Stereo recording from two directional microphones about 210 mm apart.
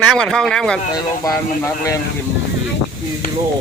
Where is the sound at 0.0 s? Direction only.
5° left (ahead or behind).